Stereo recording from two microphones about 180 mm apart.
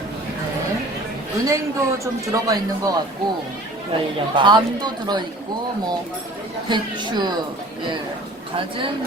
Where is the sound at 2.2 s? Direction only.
20° right (ahead or behind).